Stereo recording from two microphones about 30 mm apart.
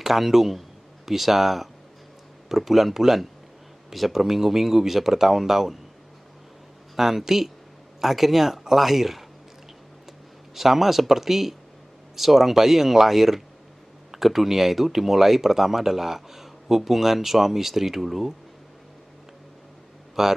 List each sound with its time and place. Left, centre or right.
0.0 s speech: centre
7.0 s speech: centre
10.5 s speech: centre
20.2 s speech: centre